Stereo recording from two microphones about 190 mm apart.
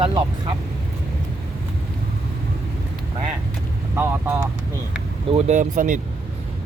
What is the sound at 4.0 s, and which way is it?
Speech, 10° right (ahead or behind).